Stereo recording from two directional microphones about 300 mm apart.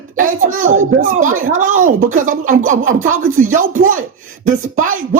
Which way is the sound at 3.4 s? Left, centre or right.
Right.